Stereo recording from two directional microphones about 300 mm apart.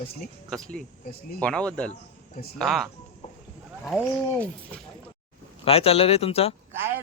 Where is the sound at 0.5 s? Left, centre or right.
Centre.